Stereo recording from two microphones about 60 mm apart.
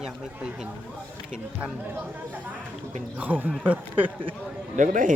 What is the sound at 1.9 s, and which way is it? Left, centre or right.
Speech, right.